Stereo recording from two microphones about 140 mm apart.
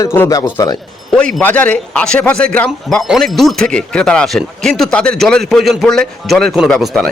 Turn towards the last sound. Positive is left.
turn(degrees=0)  # may be behind; listen again after turning